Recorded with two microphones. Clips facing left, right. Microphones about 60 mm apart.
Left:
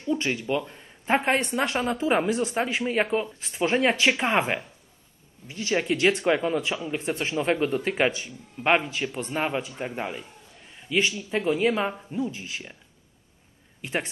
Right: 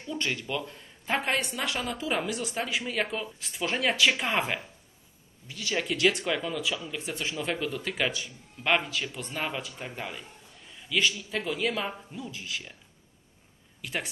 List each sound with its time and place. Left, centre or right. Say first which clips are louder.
0.1 s speech: left 6 dB; left
13.7 s speech: left 5 dB; left